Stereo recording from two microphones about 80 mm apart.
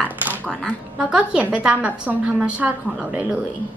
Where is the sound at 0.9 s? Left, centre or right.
Centre.